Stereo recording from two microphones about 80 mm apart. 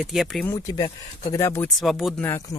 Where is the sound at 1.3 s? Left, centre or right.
Left.